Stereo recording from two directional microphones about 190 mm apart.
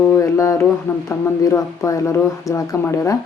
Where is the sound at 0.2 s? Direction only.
15° left (ahead or behind).